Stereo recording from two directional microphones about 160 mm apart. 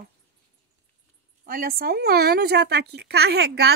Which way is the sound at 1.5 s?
65° right (ahead or behind).